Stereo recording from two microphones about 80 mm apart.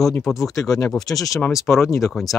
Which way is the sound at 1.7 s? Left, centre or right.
Centre.